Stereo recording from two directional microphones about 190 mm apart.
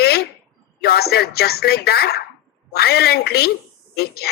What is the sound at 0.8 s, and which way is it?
Speech, 55° left (ahead or behind).